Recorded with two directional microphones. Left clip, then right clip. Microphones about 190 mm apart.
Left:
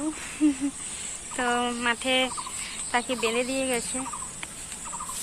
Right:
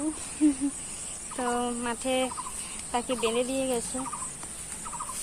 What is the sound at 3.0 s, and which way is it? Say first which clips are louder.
Speech: left 1 dB; 35° left (ahead or behind).